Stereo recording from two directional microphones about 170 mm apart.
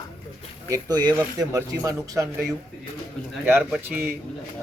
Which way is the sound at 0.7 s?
20° right (ahead or behind).